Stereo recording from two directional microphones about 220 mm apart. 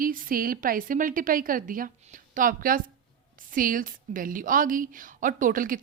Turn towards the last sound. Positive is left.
turn(degrees=-40)  # may be behind; listen again after turning